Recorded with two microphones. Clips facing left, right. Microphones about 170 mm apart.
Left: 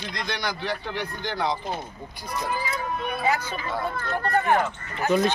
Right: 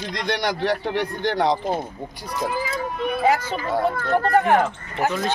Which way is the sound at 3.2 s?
90° right.